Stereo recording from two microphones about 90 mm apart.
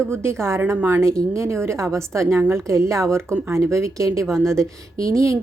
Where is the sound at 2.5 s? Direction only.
30° right (ahead or behind).